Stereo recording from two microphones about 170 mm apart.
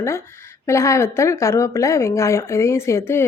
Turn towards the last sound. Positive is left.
turn(degrees=15)  # may be behind; listen again after turning